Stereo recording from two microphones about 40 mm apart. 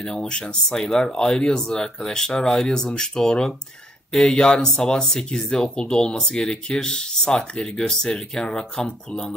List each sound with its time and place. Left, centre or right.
0.0 s speech: centre